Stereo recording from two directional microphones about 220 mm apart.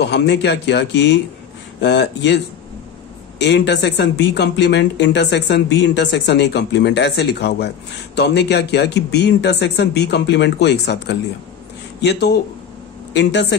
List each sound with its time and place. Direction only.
0.0 s speech: 50° left (ahead or behind)
3.4 s speech: 50° left (ahead or behind)